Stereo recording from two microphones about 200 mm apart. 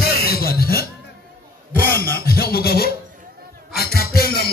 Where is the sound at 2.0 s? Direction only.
50° left (ahead or behind).